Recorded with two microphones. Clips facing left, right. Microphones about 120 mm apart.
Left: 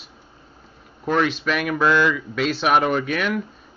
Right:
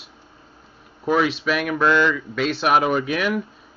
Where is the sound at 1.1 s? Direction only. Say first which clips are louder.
Right 1 dB; 5° right (ahead or behind).